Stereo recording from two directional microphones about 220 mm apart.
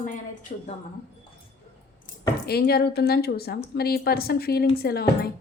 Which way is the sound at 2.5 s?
45° left (ahead or behind).